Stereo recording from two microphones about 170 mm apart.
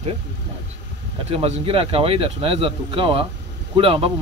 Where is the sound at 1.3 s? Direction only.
35° right (ahead or behind).